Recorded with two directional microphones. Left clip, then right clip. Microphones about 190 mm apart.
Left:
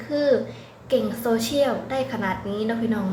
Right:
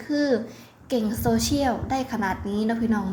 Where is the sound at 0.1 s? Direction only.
40° right (ahead or behind).